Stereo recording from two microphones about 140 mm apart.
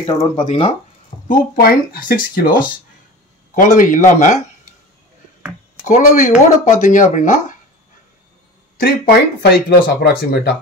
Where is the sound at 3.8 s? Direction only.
70° left (ahead or behind).